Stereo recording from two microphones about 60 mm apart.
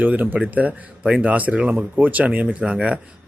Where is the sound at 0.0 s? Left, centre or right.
Right.